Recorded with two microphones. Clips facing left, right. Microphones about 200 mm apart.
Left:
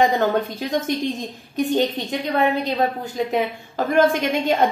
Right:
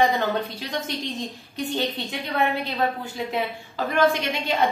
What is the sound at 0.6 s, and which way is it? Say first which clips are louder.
Speech: left 7 dB; 50° left (ahead or behind).